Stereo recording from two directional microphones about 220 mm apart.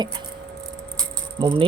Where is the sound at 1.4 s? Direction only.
25° right (ahead or behind).